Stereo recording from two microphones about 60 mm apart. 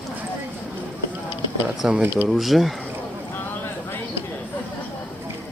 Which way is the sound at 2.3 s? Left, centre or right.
Centre.